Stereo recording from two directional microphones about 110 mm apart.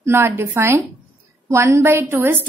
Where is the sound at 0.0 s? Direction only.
25° right (ahead or behind).